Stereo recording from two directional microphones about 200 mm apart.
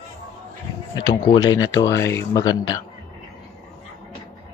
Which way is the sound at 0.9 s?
20° left (ahead or behind).